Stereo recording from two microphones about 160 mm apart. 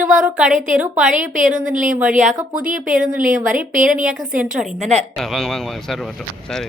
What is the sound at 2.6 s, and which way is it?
Speech, 60° right (ahead or behind).